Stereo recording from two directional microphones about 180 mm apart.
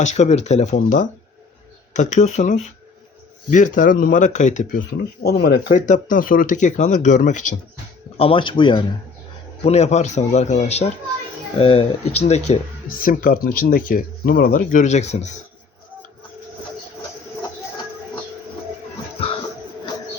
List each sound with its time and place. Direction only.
0.0 s speech: 40° left (ahead or behind)
5.2 s speech: 65° left (ahead or behind); by 7.4 s 45° left (ahead or behind)
8.2 s speech: 30° left (ahead or behind)
9.6 s speech: 35° left (ahead or behind)
12.3 s speech: 45° left (ahead or behind)